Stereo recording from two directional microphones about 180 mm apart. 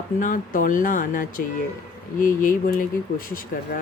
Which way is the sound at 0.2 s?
50° left (ahead or behind).